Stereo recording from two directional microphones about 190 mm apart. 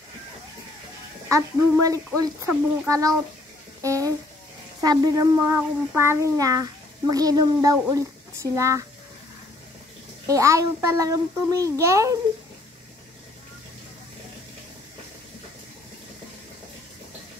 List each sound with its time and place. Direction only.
1.3 s a child's voice: 20° right (ahead or behind)
10.2 s a child's voice: 15° right (ahead or behind)